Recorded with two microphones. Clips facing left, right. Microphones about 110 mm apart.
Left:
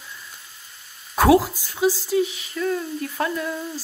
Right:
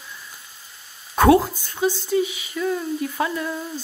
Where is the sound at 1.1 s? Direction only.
5° left (ahead or behind).